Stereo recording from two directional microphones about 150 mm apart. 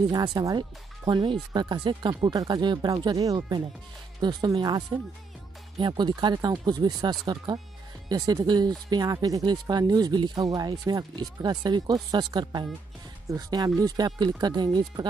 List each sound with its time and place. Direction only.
0.1 s speech: 30° right (ahead or behind)